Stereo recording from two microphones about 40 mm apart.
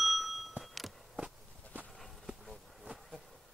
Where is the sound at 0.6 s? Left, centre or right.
Centre.